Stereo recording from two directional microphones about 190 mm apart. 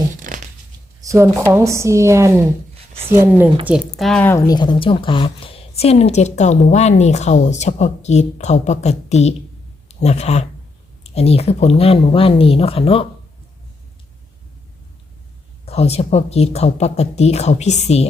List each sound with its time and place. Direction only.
0.2 s a sound: 45° right (ahead or behind)
1.0 s a woman's voice: 15° right (ahead or behind)
2.7 s a sound: 30° right (ahead or behind)
3.1 s a woman's voice: 10° right (ahead or behind)
3.7 s speech: centre (ahead or behind); by 13.1 s 30° left (ahead or behind)
15.6 s speech: 35° left (ahead or behind)